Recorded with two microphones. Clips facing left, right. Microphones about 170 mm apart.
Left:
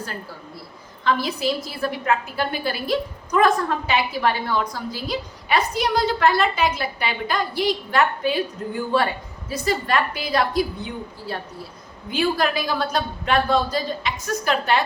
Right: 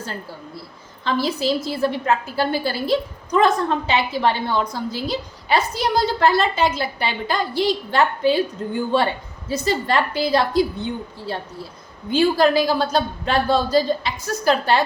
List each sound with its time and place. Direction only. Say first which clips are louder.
1.0 s a woman's voice: right 1 dB; 30° right (ahead or behind)